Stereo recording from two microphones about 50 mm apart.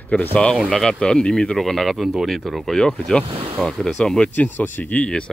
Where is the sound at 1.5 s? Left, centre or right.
Centre.